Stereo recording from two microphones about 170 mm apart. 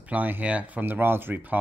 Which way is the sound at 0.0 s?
10° right (ahead or behind).